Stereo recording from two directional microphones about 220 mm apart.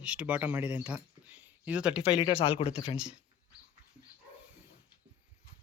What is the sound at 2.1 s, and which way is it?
Speech, 25° left (ahead or behind).